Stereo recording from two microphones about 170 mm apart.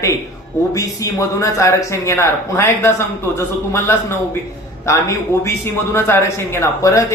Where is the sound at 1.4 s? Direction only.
15° left (ahead or behind).